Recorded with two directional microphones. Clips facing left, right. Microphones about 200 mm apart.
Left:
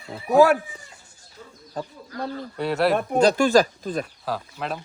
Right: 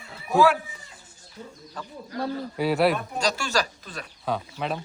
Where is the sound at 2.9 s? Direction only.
55° left (ahead or behind).